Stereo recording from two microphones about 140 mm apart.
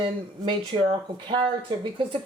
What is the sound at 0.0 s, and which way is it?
Speech, 35° right (ahead or behind).